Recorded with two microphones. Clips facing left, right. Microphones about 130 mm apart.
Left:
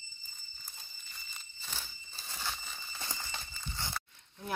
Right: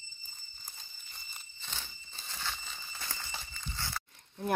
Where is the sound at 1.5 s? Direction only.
5° left (ahead or behind).